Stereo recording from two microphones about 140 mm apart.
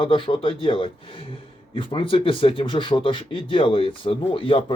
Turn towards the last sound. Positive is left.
turn(degrees=40)  # may be behind; listen again after turning